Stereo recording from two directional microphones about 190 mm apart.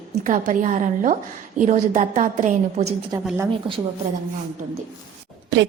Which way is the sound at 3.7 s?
25° right (ahead or behind).